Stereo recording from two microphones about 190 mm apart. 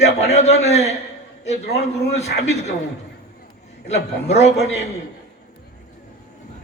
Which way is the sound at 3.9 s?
35° left (ahead or behind).